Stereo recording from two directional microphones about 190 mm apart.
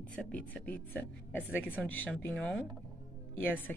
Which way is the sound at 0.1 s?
5° left (ahead or behind).